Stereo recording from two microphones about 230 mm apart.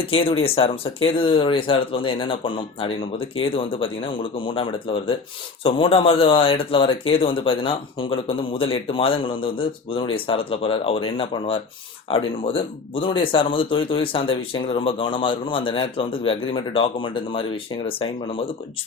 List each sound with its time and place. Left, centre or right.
0.0 s speech: left